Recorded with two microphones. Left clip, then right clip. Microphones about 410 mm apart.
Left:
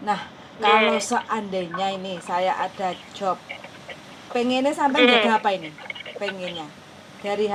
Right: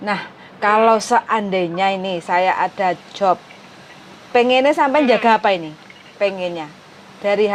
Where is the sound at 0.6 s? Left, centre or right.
Right.